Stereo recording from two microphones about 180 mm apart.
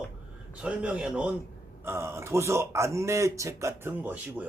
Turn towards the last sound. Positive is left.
turn(degrees=-10)  # may be behind; listen again after turning